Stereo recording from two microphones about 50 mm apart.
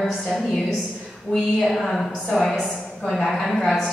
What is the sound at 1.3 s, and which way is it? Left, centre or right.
Speech, centre.